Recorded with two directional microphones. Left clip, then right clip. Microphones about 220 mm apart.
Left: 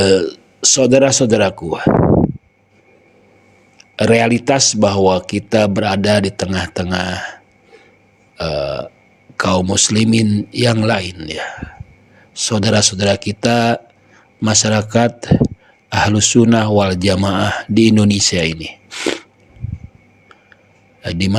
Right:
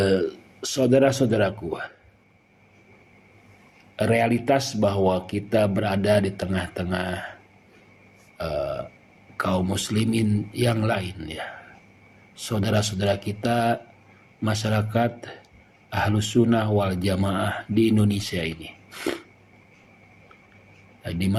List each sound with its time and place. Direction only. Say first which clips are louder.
0.0 s speech: left 9 dB; 50° left (ahead or behind)
3.9 s speech: left 9 dB; 50° left (ahead or behind)
8.4 s speech: left 8 dB; 50° left (ahead or behind)
21.0 s speech: left 9 dB; 45° left (ahead or behind)